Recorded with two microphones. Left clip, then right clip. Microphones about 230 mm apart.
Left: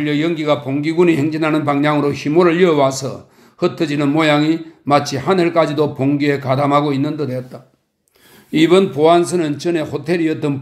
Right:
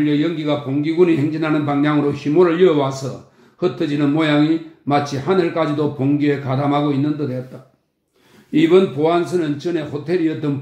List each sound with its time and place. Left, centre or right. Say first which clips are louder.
0.0 s a man's voice: left 1 dB; left